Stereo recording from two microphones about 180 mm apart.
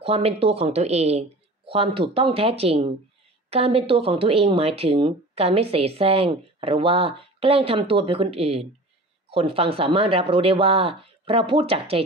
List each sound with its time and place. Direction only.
0.0 s speech: 35° right (ahead or behind)